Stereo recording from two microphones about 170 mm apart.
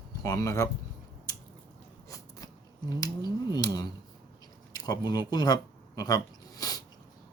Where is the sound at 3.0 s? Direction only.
25° left (ahead or behind).